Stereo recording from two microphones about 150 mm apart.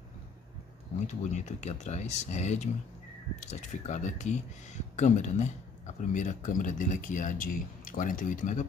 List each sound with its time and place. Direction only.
1.0 s speech: 50° left (ahead or behind)